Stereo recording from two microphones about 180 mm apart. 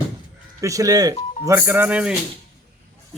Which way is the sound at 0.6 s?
20° right (ahead or behind).